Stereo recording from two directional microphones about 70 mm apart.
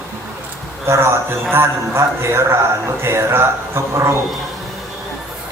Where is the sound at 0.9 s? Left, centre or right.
Right.